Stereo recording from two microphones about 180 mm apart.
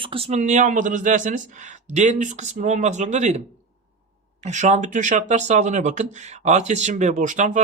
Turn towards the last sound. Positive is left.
turn(degrees=-45)  # may be behind; listen again after turning